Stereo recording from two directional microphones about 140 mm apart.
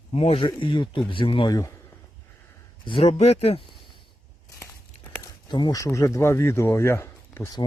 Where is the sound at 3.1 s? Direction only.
50° left (ahead or behind).